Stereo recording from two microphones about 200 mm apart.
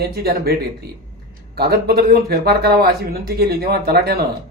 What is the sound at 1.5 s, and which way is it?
Speech, 50° right (ahead or behind).